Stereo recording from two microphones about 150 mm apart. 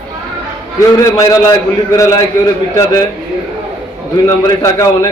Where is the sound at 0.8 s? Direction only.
25° left (ahead or behind).